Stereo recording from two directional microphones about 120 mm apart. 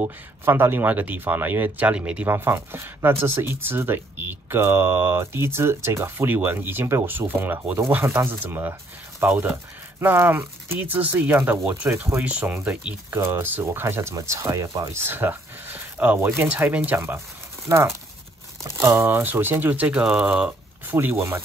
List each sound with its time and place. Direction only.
0.0 s speech: 20° right (ahead or behind)